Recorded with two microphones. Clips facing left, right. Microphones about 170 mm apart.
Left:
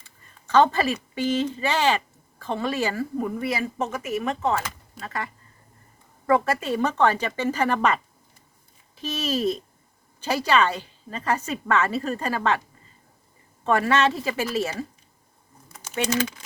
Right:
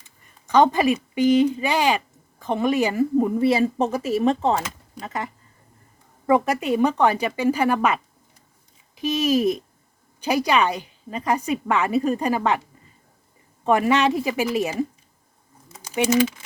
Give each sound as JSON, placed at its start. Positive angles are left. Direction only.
{"t": 0.4, "sound": "a woman's voice", "side_deg": -15}
{"t": 4.9, "sound": "a woman's voice", "side_deg": -20}
{"t": 9.0, "sound": "a woman's voice", "side_deg": -15}
{"t": 13.7, "sound": "a woman's voice", "side_deg": -15}
{"t": 15.7, "sound": "typing", "side_deg": -10}